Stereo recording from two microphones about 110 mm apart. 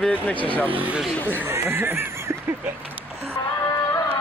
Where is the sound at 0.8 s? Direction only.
10° right (ahead or behind).